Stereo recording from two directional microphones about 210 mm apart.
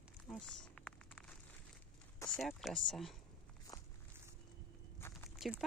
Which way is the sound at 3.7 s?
15° left (ahead or behind).